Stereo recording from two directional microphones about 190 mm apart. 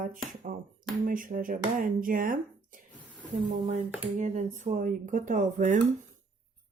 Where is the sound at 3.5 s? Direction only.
40° right (ahead or behind).